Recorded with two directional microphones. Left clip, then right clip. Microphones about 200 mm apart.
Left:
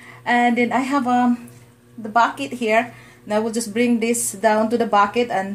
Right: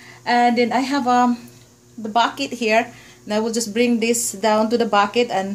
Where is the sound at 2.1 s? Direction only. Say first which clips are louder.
Left 1 dB; 10° right (ahead or behind).